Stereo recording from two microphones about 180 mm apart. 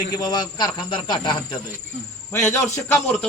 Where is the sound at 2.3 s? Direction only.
15° left (ahead or behind).